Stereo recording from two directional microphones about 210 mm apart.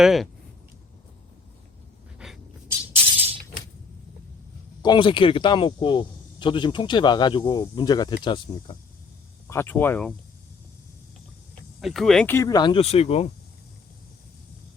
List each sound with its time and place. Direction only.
0.0 s speech: centre (ahead or behind)
2.1 s pant: centre (ahead or behind)
2.9 s music: 30° right (ahead or behind)
4.8 s speech: 20° left (ahead or behind)
9.5 s speech: 10° left (ahead or behind)
11.8 s speech: centre (ahead or behind); by 13.3 s 30° left (ahead or behind)